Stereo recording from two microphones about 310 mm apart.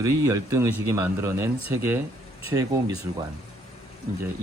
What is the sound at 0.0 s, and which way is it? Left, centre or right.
Speech, centre.